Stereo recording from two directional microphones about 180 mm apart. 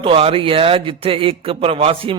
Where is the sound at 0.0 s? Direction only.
30° right (ahead or behind).